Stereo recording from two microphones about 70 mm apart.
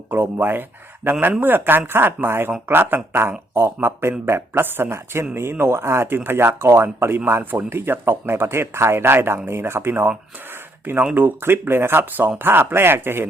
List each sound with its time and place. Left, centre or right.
0.1 s speech: right
11.1 s speech: right